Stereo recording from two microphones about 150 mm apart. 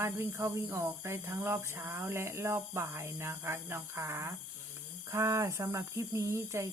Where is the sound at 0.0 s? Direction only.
20° right (ahead or behind).